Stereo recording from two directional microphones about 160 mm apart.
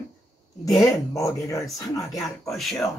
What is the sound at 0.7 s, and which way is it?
Speech, 20° left (ahead or behind).